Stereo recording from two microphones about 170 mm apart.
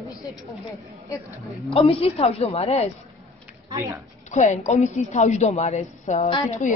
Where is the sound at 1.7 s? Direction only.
35° left (ahead or behind).